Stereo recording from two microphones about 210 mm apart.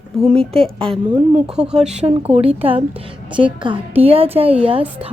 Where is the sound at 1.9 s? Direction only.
30° right (ahead or behind).